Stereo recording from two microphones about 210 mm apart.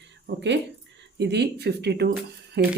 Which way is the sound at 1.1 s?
55° right (ahead or behind).